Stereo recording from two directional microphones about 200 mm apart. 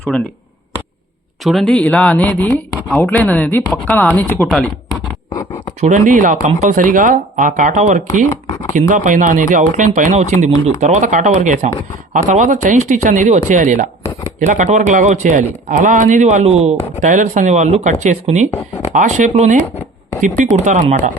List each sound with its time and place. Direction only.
0.1 s speech: 5° left (ahead or behind)
1.5 s speech: centre (ahead or behind)
5.8 s speech: 40° right (ahead or behind)
8.3 s speech: 15° left (ahead or behind)
8.9 s speech: 40° right (ahead or behind)